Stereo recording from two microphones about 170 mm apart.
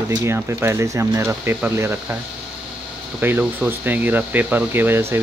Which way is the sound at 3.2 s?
10° right (ahead or behind).